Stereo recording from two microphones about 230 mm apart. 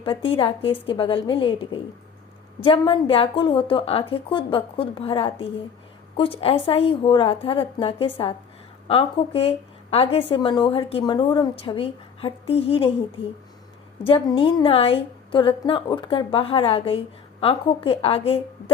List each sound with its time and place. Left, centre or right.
0.0 s a woman's voice: left
14.0 s a woman's voice: left